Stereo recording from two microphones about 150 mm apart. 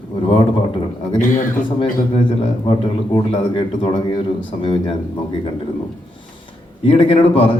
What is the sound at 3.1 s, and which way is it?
A man's voice, 35° left (ahead or behind).